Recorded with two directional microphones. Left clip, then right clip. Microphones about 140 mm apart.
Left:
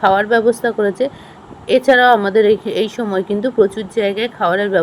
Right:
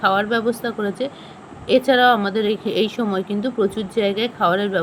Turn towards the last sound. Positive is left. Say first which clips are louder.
# left 4 dB
turn(degrees=45)  # may be behind; listen again after turning